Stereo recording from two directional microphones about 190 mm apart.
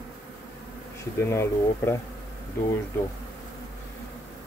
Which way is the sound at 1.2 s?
15° left (ahead or behind).